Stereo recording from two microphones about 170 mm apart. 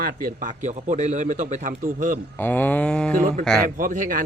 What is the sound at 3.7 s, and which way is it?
Speech, 50° right (ahead or behind).